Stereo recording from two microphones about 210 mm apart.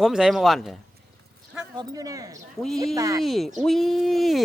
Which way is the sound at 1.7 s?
20° right (ahead or behind).